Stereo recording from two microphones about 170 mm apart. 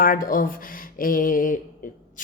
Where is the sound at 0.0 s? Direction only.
55° left (ahead or behind).